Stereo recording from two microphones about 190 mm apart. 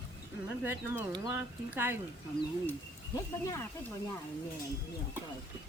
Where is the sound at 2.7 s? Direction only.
15° left (ahead or behind).